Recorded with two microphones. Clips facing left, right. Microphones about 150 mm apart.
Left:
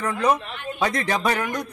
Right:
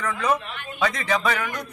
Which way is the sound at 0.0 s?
30° left (ahead or behind).